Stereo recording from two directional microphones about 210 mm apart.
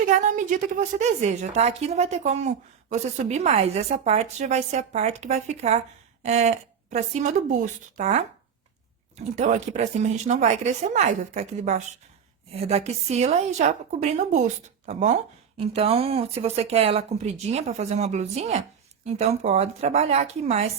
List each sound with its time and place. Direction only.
0.1 s a woman's voice: 35° right (ahead or behind)